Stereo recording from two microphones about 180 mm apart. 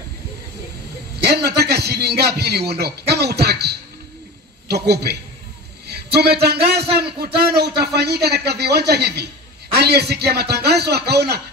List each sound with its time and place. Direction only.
1.2 s a man's voice: 65° right (ahead or behind)
5.9 s a sound: 65° right (ahead or behind)
6.8 s a man's voice: 65° right (ahead or behind)